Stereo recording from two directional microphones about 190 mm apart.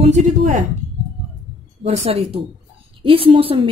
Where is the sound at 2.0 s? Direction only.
30° right (ahead or behind).